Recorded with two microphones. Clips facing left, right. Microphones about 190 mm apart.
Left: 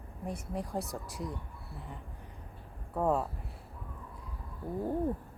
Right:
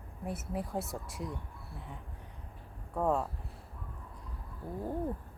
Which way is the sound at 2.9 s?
5° left (ahead or behind).